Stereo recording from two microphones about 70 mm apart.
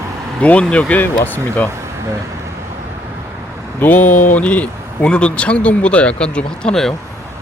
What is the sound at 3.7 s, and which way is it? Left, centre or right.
Speech, left.